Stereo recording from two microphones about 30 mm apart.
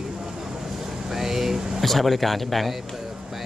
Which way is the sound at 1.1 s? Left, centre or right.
Centre.